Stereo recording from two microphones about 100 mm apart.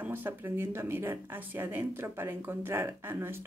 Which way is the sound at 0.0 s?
20° right (ahead or behind).